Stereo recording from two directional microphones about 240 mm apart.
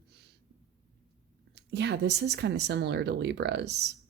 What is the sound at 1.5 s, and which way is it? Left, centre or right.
Speech, right.